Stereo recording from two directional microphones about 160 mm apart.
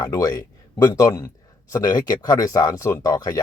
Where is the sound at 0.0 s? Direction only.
20° left (ahead or behind).